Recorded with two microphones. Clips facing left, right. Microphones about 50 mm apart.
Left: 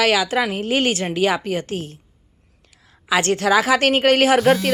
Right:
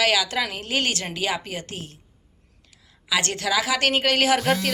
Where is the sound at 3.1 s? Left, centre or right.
Left.